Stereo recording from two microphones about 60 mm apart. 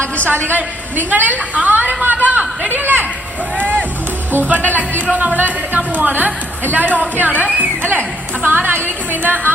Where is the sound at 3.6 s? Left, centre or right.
Right.